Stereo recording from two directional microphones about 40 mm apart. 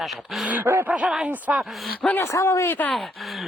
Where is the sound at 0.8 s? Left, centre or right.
Right.